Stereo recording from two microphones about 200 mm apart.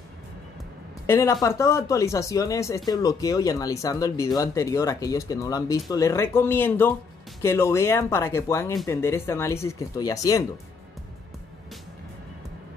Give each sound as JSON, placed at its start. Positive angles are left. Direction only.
{"t": 1.0, "sound": "speech", "side_deg": 15}